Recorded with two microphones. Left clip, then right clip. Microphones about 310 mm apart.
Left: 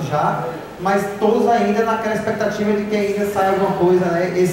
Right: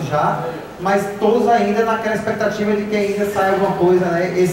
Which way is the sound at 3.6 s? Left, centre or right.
Centre.